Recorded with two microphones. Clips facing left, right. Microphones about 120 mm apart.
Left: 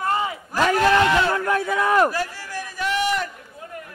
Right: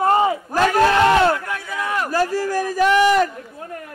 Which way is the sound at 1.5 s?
45° left (ahead or behind).